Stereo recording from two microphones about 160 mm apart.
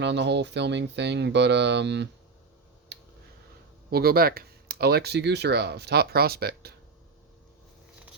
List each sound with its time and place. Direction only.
0.0 s speech: 90° right
3.8 s speech: 70° right (ahead or behind)